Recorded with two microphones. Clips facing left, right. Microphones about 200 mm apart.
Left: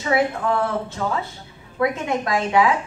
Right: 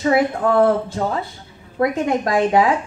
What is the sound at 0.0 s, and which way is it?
Speech, 45° right (ahead or behind).